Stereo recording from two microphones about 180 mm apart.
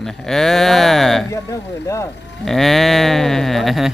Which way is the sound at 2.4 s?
Centre (ahead or behind).